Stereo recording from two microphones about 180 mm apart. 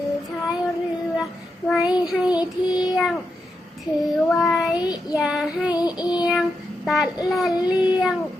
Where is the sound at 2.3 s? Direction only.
25° left (ahead or behind).